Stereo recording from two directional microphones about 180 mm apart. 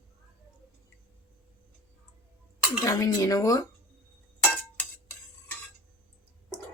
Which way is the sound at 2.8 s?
20° left (ahead or behind).